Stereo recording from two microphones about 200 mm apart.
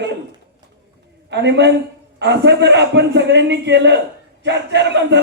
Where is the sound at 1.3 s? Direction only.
60° right (ahead or behind).